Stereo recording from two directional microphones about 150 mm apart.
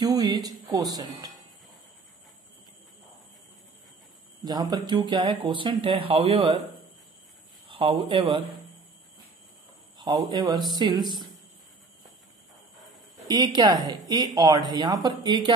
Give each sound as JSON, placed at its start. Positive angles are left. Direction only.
{"t": 0.0, "sound": "speech", "side_deg": -25}
{"t": 4.5, "sound": "speech", "side_deg": -30}
{"t": 7.6, "sound": "speech", "side_deg": -35}
{"t": 9.9, "sound": "speech", "side_deg": -30}
{"t": 13.3, "sound": "speech", "side_deg": -25}